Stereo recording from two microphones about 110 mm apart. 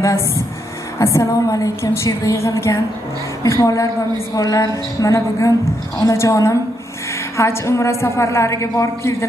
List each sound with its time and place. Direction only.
0.9 s a woman's voice: 25° left (ahead or behind)